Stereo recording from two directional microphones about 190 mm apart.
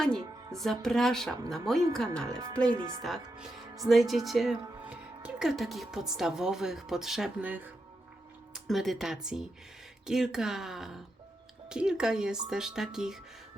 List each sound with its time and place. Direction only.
0.6 s a woman's voice: centre (ahead or behind)
2.7 s speech: 15° right (ahead or behind)
3.0 s a woman's voice: centre (ahead or behind)